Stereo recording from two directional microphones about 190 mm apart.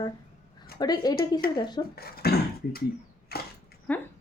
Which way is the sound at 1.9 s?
55° left (ahead or behind).